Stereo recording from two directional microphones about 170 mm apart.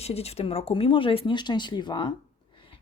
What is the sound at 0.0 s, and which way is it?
Speech, 35° left (ahead or behind).